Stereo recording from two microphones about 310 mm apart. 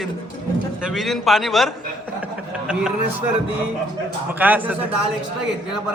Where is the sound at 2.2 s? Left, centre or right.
Centre.